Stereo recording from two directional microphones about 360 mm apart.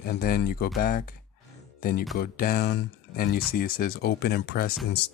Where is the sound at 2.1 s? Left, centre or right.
Left.